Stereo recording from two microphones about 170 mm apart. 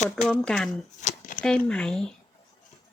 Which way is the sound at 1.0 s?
50° left (ahead or behind).